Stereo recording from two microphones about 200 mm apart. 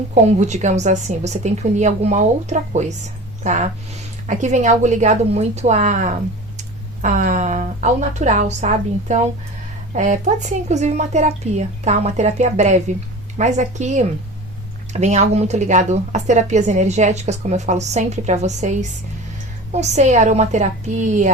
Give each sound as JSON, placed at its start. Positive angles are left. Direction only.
{"t": 0.1, "sound": "a woman's voice", "side_deg": -35}